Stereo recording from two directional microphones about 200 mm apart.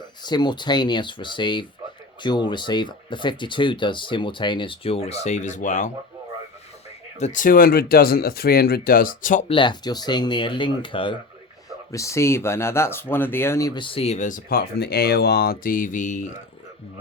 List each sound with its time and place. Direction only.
0.2 s speech: 20° left (ahead or behind); by 5.9 s 40° left (ahead or behind)
7.2 s speech: 40° left (ahead or behind)
9.5 s speech: 25° left (ahead or behind); by 16.4 s 40° left (ahead or behind)